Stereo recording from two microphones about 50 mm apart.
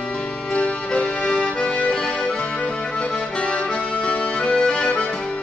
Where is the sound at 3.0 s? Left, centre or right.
Left.